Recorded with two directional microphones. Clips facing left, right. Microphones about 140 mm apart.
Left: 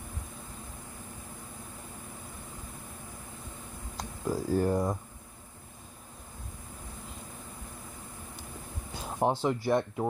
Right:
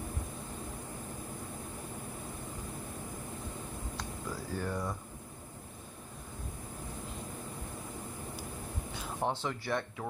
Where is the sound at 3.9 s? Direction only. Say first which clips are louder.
Left 10 dB; 40° left (ahead or behind).